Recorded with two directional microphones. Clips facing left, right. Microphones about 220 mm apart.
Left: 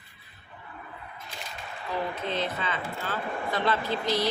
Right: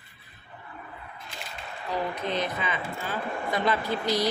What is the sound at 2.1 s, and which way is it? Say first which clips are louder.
Speech: right 1 dB; 15° right (ahead or behind).